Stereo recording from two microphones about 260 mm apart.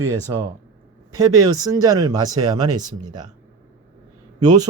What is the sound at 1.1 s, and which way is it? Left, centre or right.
Speech, centre.